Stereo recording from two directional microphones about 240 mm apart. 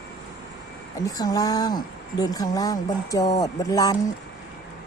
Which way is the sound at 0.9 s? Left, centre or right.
Centre.